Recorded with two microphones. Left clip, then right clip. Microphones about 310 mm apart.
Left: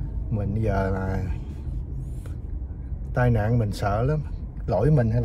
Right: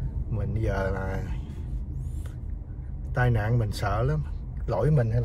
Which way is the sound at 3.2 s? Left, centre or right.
Left.